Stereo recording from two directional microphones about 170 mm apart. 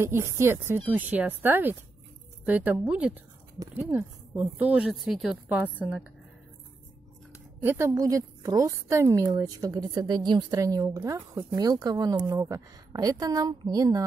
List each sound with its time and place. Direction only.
0.0 s speech: 15° right (ahead or behind)
7.6 s a woman's voice: 15° right (ahead or behind)